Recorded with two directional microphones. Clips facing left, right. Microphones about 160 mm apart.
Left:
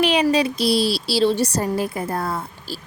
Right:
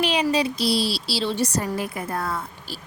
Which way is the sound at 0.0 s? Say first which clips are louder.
Left 4 dB; 60° left (ahead or behind).